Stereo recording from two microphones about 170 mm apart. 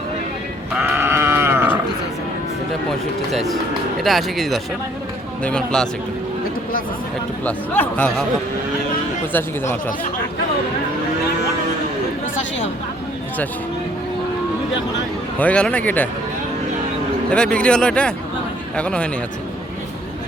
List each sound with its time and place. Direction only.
0.7 s sheep: 5° right (ahead or behind)
3.3 s speech: centre (ahead or behind)
7.4 s speech: 10° left (ahead or behind)
9.3 s speech: 10° left (ahead or behind)
15.4 s speech: 5° left (ahead or behind)
17.3 s speech: 5° left (ahead or behind)